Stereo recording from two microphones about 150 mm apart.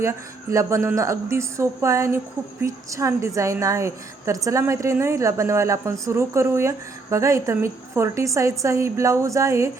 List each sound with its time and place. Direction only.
0.0 s speech: 20° right (ahead or behind)